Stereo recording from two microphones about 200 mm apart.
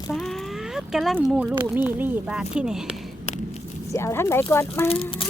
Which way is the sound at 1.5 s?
10° right (ahead or behind).